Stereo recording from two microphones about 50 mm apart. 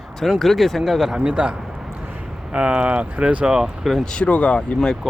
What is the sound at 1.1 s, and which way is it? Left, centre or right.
Speech, right.